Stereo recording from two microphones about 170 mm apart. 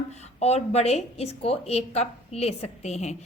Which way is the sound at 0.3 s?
40° left (ahead or behind).